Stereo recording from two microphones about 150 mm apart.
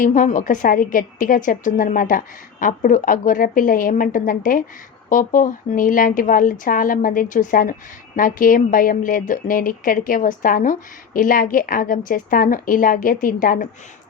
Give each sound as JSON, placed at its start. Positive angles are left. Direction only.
{"t": 0.0, "sound": "speech", "side_deg": 60}